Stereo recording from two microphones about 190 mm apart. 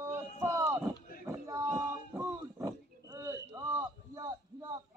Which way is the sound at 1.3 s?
15° right (ahead or behind).